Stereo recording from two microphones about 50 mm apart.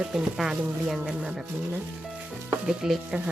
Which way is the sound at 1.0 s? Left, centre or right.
Centre.